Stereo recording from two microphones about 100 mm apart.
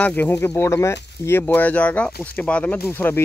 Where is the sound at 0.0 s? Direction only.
15° left (ahead or behind).